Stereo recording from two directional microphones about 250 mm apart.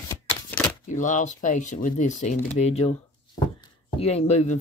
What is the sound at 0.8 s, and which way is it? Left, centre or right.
Speech, left.